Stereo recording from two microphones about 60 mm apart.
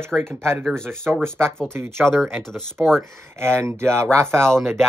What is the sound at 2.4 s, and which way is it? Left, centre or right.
Speech, centre.